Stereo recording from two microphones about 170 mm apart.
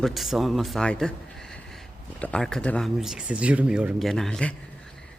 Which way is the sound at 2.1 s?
5° left (ahead or behind).